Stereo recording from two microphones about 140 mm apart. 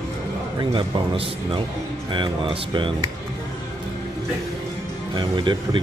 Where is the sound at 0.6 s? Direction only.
40° right (ahead or behind).